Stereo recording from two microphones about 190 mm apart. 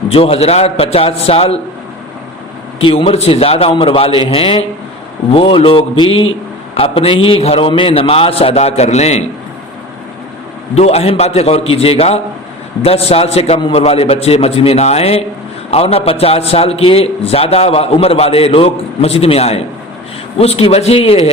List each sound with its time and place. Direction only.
0.1 s a man's voice: 30° left (ahead or behind)
2.8 s a man's voice: 30° left (ahead or behind)
10.8 s a man's voice: 35° left (ahead or behind)